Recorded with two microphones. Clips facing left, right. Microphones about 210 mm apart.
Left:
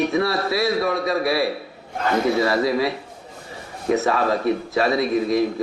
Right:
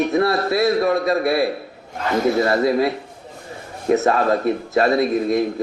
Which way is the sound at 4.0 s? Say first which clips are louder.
Right 3 dB; 50° right (ahead or behind).